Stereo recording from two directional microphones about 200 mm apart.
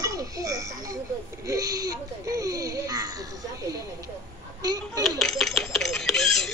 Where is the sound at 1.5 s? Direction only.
20° right (ahead or behind).